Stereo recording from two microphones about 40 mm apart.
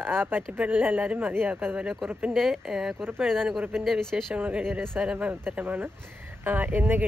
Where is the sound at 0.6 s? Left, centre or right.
Right.